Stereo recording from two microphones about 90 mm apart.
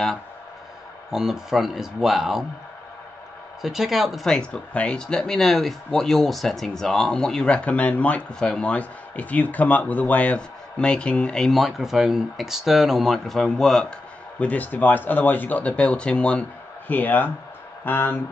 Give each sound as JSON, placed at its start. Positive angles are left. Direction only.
{"t": 1.1, "sound": "speech", "side_deg": -5}
{"t": 3.6, "sound": "speech", "side_deg": -5}
{"t": 4.4, "sound": "speech", "side_deg": 15}
{"t": 14.4, "sound": "speech", "side_deg": 20}